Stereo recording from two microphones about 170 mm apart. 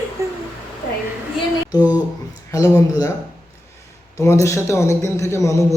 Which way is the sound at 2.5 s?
20° left (ahead or behind).